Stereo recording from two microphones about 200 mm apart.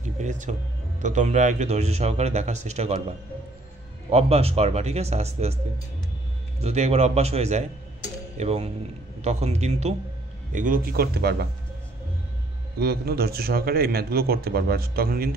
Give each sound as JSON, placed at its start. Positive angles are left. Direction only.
{"t": 0.2, "sound": "speech", "side_deg": -35}
{"t": 6.6, "sound": "a man's voice", "side_deg": -35}
{"t": 12.7, "sound": "a man's voice", "side_deg": -50}